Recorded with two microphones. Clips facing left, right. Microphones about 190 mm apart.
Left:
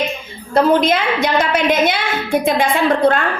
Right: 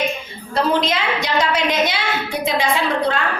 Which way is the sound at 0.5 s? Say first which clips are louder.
Left 6 dB; 50° left (ahead or behind).